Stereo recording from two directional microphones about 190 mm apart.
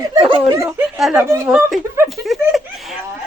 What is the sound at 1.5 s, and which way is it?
Speech, 5° right (ahead or behind).